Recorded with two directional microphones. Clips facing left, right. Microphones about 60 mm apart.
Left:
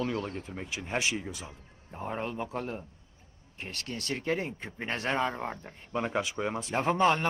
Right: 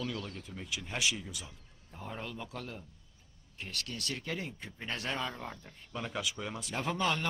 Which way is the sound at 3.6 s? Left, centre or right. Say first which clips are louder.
Left 3 dB; left.